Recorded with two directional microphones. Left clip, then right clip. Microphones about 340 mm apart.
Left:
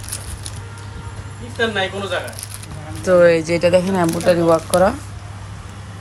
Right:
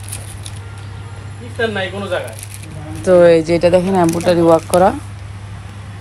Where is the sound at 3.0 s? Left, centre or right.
Centre.